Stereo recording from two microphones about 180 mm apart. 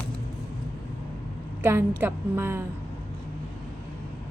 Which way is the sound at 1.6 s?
10° right (ahead or behind).